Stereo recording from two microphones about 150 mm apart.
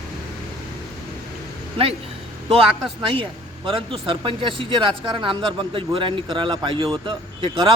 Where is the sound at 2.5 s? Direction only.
35° right (ahead or behind).